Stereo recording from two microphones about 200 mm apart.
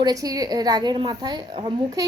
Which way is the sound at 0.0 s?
20° right (ahead or behind).